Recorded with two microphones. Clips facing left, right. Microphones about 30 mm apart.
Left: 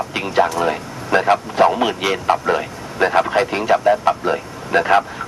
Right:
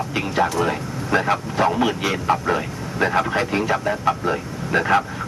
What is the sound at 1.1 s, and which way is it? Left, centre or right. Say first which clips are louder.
Speech: left 5 dB; centre.